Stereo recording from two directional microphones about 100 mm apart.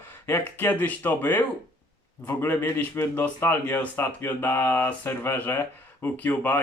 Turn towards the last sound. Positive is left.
turn(degrees=15)  # may be behind; listen again after turning